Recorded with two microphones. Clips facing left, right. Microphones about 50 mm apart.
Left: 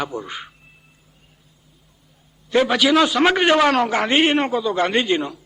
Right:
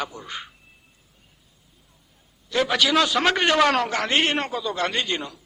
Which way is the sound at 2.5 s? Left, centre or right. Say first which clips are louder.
Left 5 dB; centre.